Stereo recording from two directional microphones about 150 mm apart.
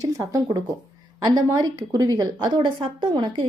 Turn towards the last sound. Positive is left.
turn(degrees=-30)  # may be behind; listen again after turning